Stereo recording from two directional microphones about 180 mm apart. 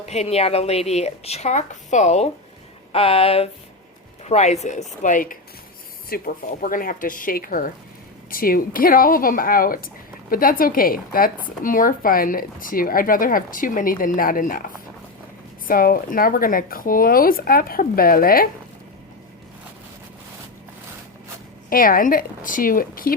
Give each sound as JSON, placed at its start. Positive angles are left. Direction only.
{"t": 0.0, "sound": "a woman's voice", "side_deg": 35}
{"t": 15.6, "sound": "a woman's voice", "side_deg": 50}
{"t": 21.7, "sound": "a woman's voice", "side_deg": 50}